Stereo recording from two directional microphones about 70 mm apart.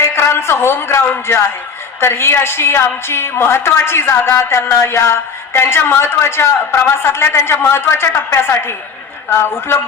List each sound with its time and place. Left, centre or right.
0.0 s a woman's voice: left